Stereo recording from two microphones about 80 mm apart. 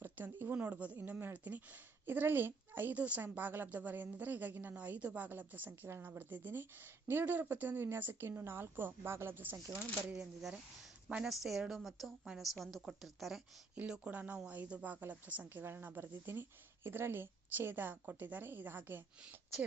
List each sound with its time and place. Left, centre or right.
0.0 s a woman's voice: right
10.2 s a woman's voice: centre
13.7 s a woman's voice: centre